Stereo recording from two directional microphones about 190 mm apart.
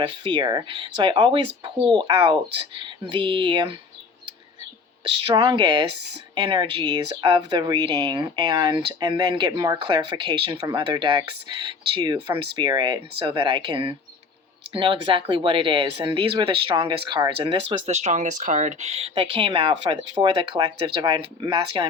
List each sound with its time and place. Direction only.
0.3 s speech: 25° right (ahead or behind)
5.0 s speech: 25° right (ahead or behind)